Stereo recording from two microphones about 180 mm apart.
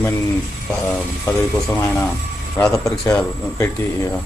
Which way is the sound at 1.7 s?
10° left (ahead or behind).